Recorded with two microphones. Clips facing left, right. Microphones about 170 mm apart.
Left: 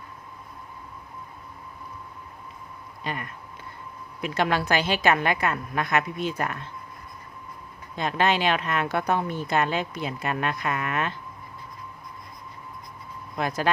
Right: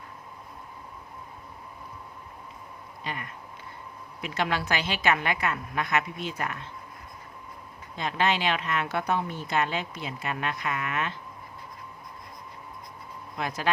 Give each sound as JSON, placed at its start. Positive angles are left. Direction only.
{"t": 3.0, "sound": "a sound", "side_deg": 45}
{"t": 4.2, "sound": "speech", "side_deg": 45}
{"t": 7.9, "sound": "speech", "side_deg": 50}
{"t": 13.3, "sound": "speech", "side_deg": 45}